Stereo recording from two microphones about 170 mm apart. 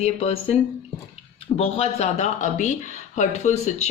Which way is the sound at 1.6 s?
35° left (ahead or behind).